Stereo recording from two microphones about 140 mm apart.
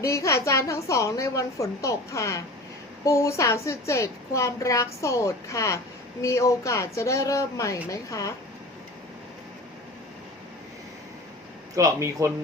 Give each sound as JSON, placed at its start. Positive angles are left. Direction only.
{"t": 0.0, "sound": "a woman's voice", "side_deg": 20}
{"t": 11.7, "sound": "speech", "side_deg": -25}